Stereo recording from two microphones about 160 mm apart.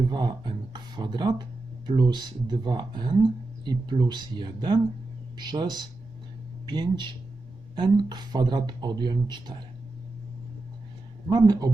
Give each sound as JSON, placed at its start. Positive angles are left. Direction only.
{"t": 0.1, "sound": "speech", "side_deg": -30}
{"t": 11.3, "sound": "speech", "side_deg": -25}